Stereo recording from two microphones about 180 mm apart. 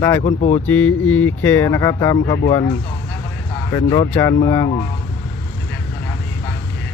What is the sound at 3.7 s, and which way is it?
Speech, 20° left (ahead or behind).